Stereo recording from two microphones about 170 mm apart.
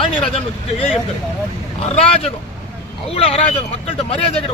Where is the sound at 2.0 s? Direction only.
35° left (ahead or behind).